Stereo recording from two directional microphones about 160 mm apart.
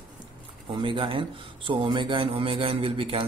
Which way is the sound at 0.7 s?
30° right (ahead or behind).